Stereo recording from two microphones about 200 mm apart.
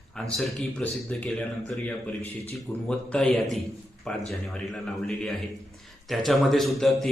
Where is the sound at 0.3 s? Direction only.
5° left (ahead or behind).